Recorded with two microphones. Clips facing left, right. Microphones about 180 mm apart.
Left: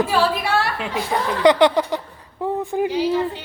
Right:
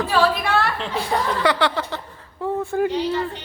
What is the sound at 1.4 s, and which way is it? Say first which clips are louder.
Speech: left 6 dB; 20° left (ahead or behind).